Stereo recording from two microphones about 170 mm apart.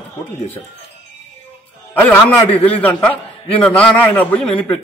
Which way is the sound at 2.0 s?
10° left (ahead or behind).